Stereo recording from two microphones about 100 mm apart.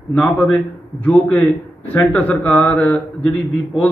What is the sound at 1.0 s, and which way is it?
A man's voice, 10° left (ahead or behind).